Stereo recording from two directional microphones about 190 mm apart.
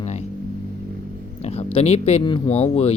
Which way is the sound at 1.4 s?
30° left (ahead or behind).